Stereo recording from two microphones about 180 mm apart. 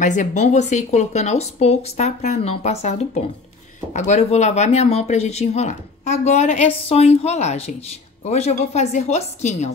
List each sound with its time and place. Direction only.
0.0 s speech: 45° left (ahead or behind)